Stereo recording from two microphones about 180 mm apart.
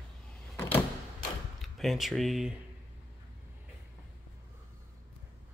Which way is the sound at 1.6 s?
Centre (ahead or behind).